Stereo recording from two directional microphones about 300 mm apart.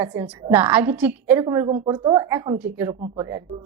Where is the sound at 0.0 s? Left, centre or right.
Centre.